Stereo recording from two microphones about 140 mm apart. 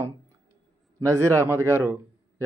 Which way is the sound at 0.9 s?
20° right (ahead or behind).